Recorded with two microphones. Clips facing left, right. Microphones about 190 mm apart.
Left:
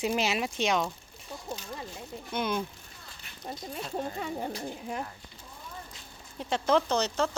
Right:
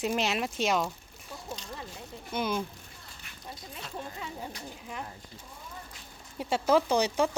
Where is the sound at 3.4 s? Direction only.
45° left (ahead or behind).